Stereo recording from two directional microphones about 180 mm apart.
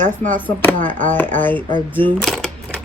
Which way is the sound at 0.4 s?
10° left (ahead or behind).